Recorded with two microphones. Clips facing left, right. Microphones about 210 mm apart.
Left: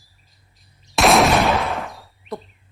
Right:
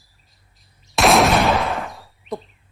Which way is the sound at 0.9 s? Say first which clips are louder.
Even; centre (ahead or behind).